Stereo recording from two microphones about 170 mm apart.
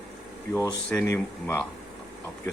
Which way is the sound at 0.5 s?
20° left (ahead or behind).